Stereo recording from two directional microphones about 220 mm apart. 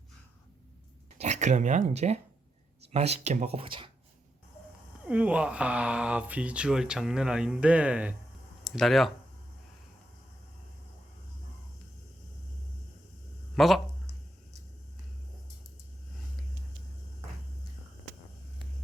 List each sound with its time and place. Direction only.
1.2 s speech: 30° right (ahead or behind)
5.0 s speech: 5° right (ahead or behind)
13.6 s speech: centre (ahead or behind)